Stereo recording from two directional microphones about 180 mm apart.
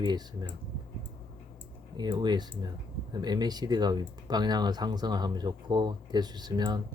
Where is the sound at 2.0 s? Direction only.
25° right (ahead or behind).